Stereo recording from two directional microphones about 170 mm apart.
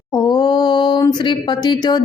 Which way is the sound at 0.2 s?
25° left (ahead or behind).